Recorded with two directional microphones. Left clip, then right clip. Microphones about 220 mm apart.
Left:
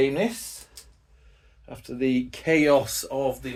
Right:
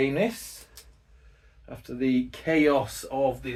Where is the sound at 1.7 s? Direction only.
25° left (ahead or behind); by 3.5 s 50° left (ahead or behind).